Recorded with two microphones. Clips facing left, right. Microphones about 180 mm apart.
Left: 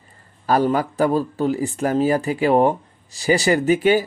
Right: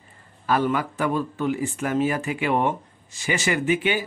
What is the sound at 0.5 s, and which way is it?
Speech, 35° left (ahead or behind).